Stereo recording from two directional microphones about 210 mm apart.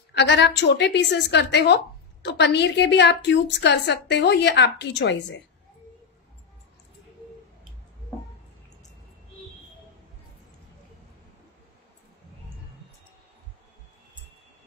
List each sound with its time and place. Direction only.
0.1 s a woman's voice: 55° left (ahead or behind)